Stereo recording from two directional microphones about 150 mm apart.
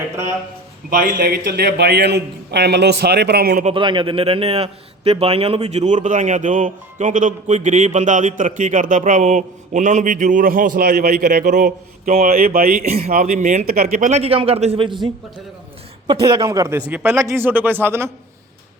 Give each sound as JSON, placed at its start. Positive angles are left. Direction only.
{"t": 0.9, "sound": "a man's voice", "side_deg": -75}
{"t": 3.8, "sound": "a man's voice", "side_deg": -35}
{"t": 12.2, "sound": "speech", "side_deg": -70}
{"t": 12.9, "sound": "a man's voice", "side_deg": -45}
{"t": 13.1, "sound": "a man's voice", "side_deg": -60}
{"t": 13.7, "sound": "a man's voice", "side_deg": -85}
{"t": 16.2, "sound": "speech", "side_deg": -35}
{"t": 16.5, "sound": "speech", "side_deg": -20}
{"t": 16.9, "sound": "speech", "side_deg": -10}